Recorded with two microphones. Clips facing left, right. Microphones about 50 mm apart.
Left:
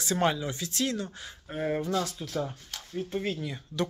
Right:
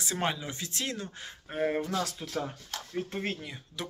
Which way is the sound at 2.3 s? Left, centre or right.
Right.